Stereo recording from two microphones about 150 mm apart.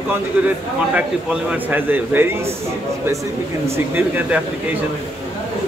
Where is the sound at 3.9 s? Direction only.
10° right (ahead or behind).